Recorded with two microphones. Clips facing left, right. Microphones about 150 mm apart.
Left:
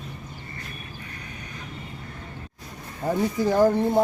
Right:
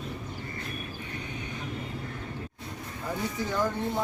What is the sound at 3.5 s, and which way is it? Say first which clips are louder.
Speech: left 11 dB; 40° left (ahead or behind).